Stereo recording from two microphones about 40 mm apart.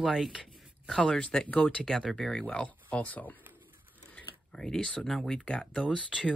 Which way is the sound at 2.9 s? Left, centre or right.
Left.